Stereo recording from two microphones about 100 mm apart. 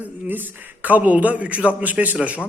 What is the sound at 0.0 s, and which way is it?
A man's voice, 20° right (ahead or behind).